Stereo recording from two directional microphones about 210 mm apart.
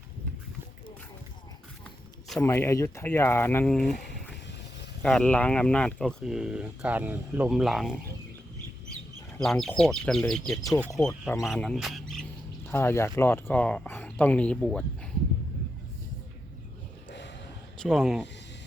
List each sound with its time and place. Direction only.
2.4 s speech: 10° left (ahead or behind)
5.0 s speech: 5° left (ahead or behind)
9.4 s speech: centre (ahead or behind)
12.6 s speech: 10° left (ahead or behind)
17.1 s a sound: 55° left (ahead or behind)
17.7 s speech: centre (ahead or behind)